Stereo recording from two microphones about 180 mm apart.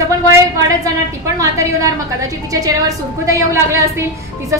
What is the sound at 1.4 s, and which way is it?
A woman's voice, 20° right (ahead or behind).